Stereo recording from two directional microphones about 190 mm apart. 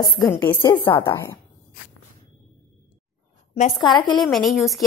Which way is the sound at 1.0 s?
15° left (ahead or behind).